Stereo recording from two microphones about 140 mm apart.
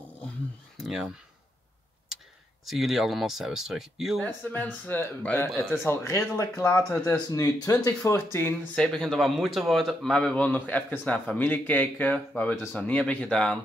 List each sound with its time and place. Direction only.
0.7 s a sound: centre (ahead or behind)
2.6 s speech: centre (ahead or behind)
4.2 s speech: 10° left (ahead or behind)
8.7 s speech: 5° left (ahead or behind)